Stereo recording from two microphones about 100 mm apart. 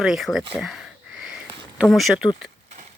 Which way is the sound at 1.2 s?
5° right (ahead or behind).